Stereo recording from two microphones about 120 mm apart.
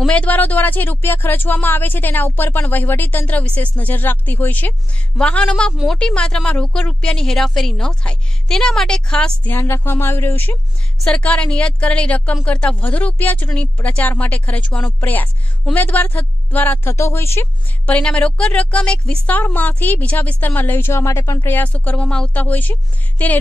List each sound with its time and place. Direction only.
0.0 s speech: 10° left (ahead or behind)
17.8 s speech: 10° left (ahead or behind)